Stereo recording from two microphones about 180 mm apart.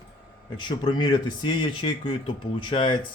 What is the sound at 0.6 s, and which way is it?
Speech, 25° left (ahead or behind).